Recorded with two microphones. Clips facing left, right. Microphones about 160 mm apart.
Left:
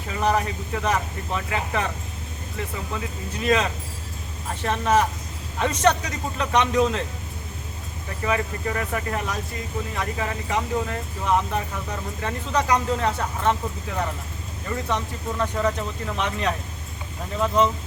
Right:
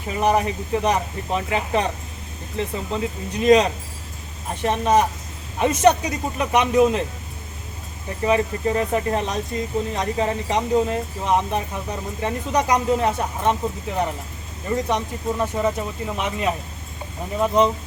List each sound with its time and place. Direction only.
0.1 s speech: 20° right (ahead or behind)
8.2 s speech: 25° right (ahead or behind)